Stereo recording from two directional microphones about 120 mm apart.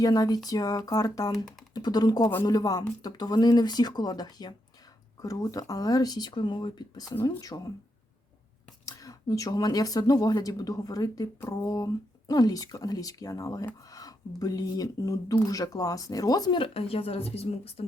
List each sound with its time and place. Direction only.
0.0 s speech: 30° left (ahead or behind)
8.9 s speech: 30° left (ahead or behind)
16.6 s a woman's voice: 50° left (ahead or behind)